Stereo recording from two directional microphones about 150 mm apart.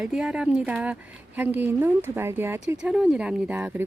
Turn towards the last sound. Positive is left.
turn(degrees=-5)  # may be behind; listen again after turning